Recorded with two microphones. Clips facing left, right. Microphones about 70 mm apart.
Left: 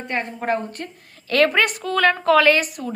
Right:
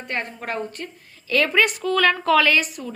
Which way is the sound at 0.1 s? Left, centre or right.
Left.